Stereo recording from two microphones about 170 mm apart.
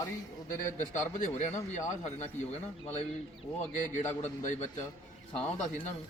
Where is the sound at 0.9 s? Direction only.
45° left (ahead or behind).